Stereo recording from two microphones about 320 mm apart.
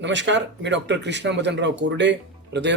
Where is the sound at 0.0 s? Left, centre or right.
Right.